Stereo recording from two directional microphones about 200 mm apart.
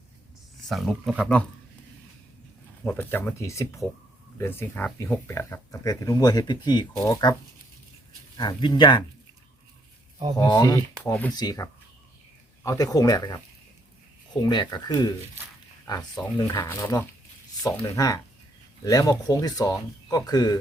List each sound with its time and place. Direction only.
0.7 s speech: centre (ahead or behind)
2.8 s speech: 10° left (ahead or behind)
8.4 s speech: 20° left (ahead or behind)
10.3 s speech: 20° left (ahead or behind)
14.4 s speech: 20° left (ahead or behind)
16.5 s speech: 15° left (ahead or behind)